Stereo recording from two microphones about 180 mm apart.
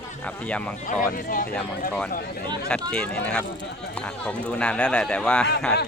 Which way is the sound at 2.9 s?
5° left (ahead or behind).